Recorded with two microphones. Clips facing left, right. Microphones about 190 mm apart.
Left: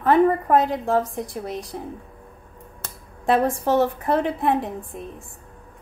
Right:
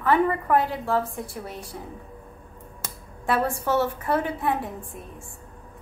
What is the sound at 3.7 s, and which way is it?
A woman's voice, 15° left (ahead or behind).